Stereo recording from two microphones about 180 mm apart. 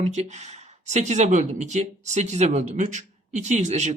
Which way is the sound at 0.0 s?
40° right (ahead or behind).